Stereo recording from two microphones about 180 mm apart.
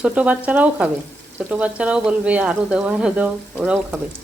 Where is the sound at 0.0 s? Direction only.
5° right (ahead or behind).